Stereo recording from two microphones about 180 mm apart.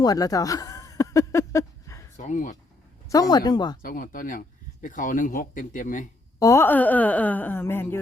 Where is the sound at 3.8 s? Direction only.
50° left (ahead or behind).